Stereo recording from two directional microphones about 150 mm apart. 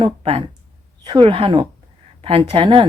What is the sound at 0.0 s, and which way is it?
Speech, 40° right (ahead or behind).